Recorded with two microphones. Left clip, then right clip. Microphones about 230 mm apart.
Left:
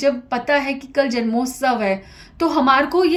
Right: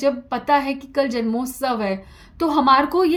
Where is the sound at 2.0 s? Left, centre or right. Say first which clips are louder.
Left 2 dB; right.